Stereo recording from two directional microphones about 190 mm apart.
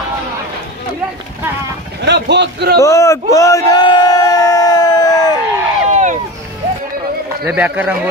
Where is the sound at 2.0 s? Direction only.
65° right (ahead or behind).